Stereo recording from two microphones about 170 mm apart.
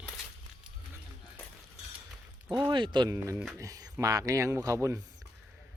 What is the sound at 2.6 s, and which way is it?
A man's voice, 25° right (ahead or behind).